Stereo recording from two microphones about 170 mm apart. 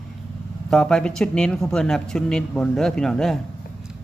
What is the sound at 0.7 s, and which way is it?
Speech, 5° left (ahead or behind).